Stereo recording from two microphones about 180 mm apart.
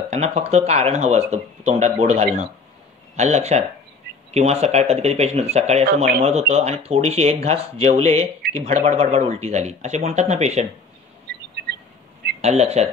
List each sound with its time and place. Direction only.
0.1 s speech: 35° right (ahead or behind)
12.4 s speech: 35° right (ahead or behind)